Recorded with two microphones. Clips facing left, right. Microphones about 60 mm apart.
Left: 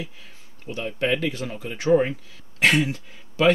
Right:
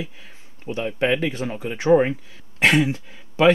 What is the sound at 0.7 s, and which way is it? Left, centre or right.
Speech, right.